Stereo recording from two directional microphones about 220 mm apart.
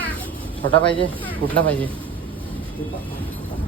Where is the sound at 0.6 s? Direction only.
25° left (ahead or behind).